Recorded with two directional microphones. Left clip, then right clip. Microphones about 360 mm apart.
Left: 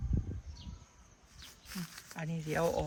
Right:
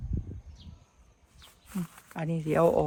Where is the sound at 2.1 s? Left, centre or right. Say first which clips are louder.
Right 9 dB; centre.